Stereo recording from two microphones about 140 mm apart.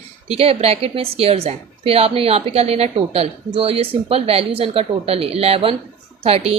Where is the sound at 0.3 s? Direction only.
45° right (ahead or behind).